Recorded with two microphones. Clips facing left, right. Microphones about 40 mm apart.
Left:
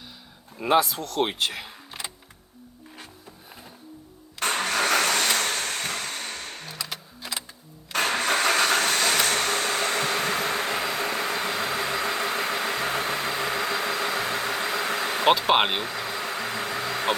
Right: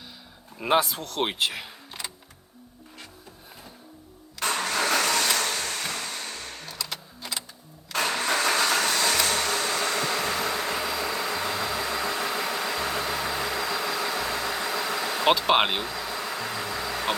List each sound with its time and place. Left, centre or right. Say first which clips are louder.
0.8 s speech: left 2 dB; right
1.2 s speech: left 1 dB; centre
4.4 s vehicle: left 2 dB; left
7.9 s vehicle: left 2 dB; left
15.3 s vehicle: left 1 dB; centre
15.8 s bee: left 1 dB; left